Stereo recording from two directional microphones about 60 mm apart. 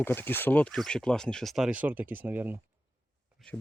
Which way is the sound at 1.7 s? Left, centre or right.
Right.